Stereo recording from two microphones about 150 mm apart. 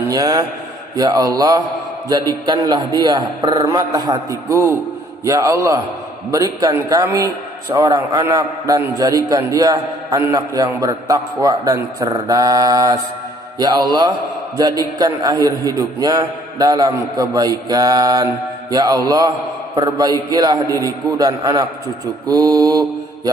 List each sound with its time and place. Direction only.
0.1 s a man's voice: 25° right (ahead or behind)